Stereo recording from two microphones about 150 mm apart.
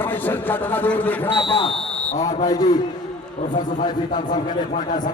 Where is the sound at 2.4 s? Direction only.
25° left (ahead or behind).